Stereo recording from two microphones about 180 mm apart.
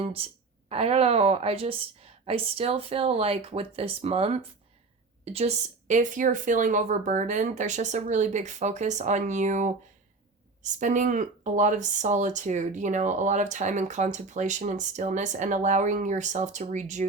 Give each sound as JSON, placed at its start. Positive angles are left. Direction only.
{"t": 0.0, "sound": "a woman's voice", "side_deg": -30}